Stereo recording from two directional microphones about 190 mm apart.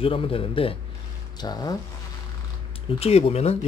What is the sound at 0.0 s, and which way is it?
Speech, 30° left (ahead or behind).